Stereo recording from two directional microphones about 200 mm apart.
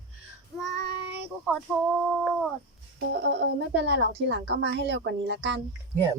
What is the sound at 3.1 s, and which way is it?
Speech, 55° right (ahead or behind).